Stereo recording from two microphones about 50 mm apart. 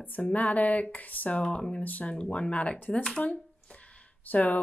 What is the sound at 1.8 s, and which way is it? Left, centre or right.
Speech, left.